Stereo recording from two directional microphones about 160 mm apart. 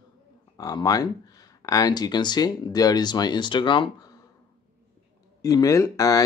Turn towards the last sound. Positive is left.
turn(degrees=20)  # may be behind; listen again after turning